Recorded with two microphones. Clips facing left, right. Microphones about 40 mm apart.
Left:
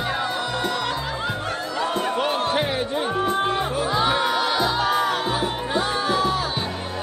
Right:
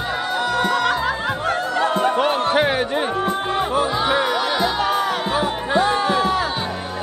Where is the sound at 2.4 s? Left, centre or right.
Right.